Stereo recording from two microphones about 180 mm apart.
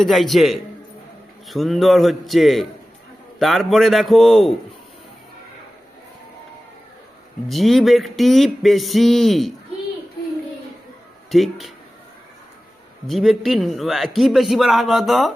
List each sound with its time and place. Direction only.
0.0 s a man's voice: centre (ahead or behind)
7.4 s a man's voice: centre (ahead or behind)
11.3 s a man's voice: centre (ahead or behind)
13.1 s a man's voice: centre (ahead or behind)